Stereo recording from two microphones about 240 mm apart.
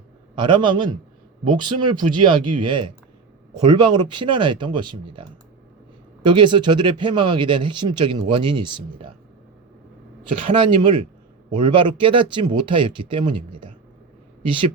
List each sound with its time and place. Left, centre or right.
0.3 s speech: centre
6.2 s speech: centre
10.4 s speech: right